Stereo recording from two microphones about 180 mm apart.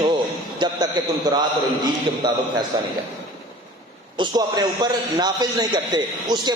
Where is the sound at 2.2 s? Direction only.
25° right (ahead or behind).